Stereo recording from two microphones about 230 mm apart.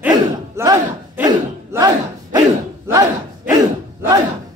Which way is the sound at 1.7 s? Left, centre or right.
Centre.